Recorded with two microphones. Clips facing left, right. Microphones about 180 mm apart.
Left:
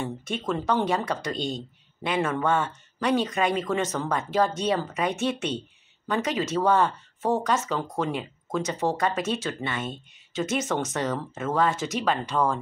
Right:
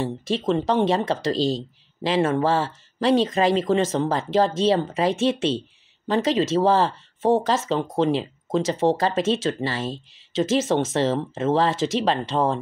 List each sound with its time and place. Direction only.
0.5 s speech: 25° right (ahead or behind)